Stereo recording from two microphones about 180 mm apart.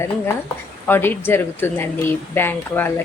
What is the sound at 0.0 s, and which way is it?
Speech, 15° left (ahead or behind).